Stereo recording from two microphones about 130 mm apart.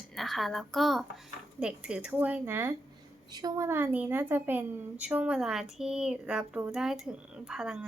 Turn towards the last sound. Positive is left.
turn(degrees=-5)  # may be behind; listen again after turning